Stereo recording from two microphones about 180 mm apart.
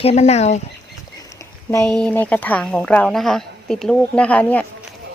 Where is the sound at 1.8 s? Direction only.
5° left (ahead or behind).